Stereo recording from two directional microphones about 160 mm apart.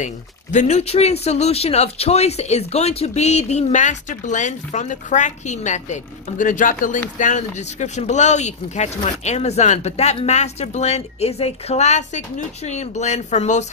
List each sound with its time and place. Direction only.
0.0 s speech: 50° left (ahead or behind)